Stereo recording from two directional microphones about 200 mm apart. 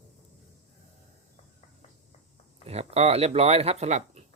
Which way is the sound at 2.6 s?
30° right (ahead or behind).